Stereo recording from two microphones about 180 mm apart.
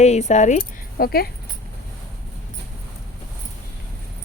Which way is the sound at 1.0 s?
60° left (ahead or behind).